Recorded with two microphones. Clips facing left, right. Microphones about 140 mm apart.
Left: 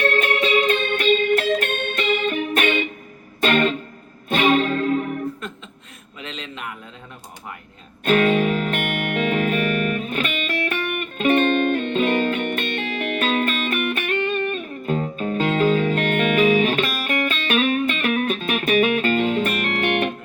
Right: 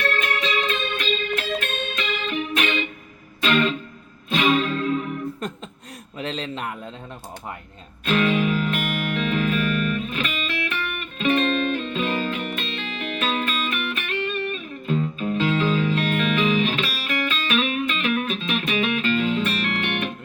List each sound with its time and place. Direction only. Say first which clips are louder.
0.0 s music: left 5 dB; 55° left (ahead or behind)
5.4 s a sound: right 3 dB; 40° right (ahead or behind)
8.0 s music: left 3 dB; 50° left (ahead or behind)
11.8 s music: left 5 dB; 60° left (ahead or behind)